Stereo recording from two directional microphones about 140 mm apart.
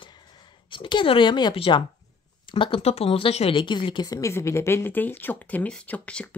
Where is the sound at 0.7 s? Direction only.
35° left (ahead or behind); by 6.2 s 10° left (ahead or behind).